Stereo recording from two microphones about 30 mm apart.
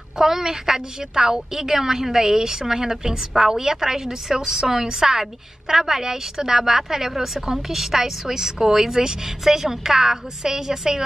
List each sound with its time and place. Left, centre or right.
0.2 s a woman's voice: centre